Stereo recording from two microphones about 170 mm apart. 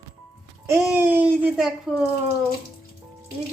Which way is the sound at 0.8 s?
10° right (ahead or behind).